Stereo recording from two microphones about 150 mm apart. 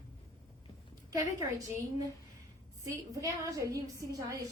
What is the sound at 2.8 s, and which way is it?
A woman's voice, 20° right (ahead or behind).